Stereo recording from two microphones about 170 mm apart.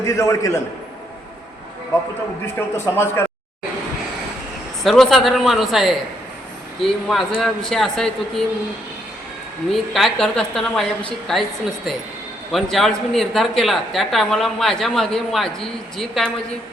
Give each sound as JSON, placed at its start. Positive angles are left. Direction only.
{"t": 0.0, "sound": "a man's voice", "side_deg": 15}
{"t": 2.6, "sound": "a man's voice", "side_deg": 15}
{"t": 4.8, "sound": "speech", "side_deg": 0}
{"t": 9.9, "sound": "speech", "side_deg": 0}
{"t": 12.5, "sound": "speech", "side_deg": 0}